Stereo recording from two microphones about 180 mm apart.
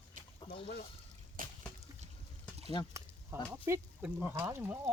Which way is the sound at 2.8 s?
25° left (ahead or behind).